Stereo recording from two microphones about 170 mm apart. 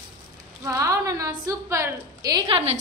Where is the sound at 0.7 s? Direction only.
20° right (ahead or behind).